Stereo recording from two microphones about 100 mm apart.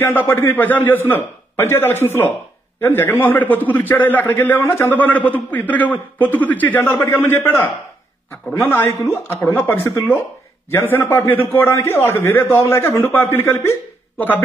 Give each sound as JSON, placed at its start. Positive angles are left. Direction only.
{"t": 0.0, "sound": "a man's voice", "side_deg": 20}